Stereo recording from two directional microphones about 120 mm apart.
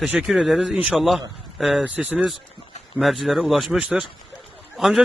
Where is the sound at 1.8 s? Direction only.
10° right (ahead or behind).